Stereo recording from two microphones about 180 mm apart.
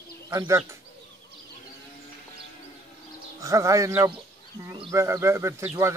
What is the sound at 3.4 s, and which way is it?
Speech, 15° right (ahead or behind).